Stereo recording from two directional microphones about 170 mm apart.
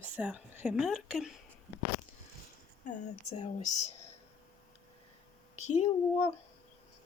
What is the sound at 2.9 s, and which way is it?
Speech, 40° left (ahead or behind).